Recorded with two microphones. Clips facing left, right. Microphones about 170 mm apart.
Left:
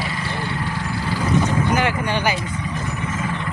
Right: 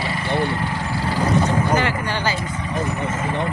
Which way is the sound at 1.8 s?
15° left (ahead or behind).